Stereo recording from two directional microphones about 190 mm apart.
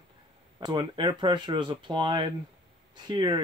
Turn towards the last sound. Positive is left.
turn(degrees=-20)  # may be behind; listen again after turning